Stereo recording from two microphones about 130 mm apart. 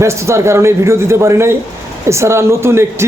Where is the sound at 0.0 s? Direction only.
20° right (ahead or behind).